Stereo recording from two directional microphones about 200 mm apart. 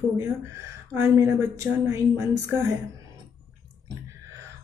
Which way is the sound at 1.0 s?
15° right (ahead or behind).